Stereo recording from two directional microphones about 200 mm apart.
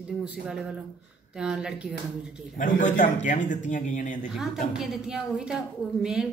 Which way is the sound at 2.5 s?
40° left (ahead or behind).